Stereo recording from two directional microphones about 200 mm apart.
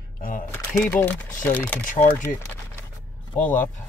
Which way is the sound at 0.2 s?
45° left (ahead or behind).